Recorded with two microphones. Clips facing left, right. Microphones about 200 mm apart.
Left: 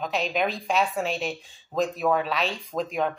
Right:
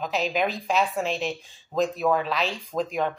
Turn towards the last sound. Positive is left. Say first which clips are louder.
# right 1 dB
turn(degrees=0)  # may be behind; listen again after turning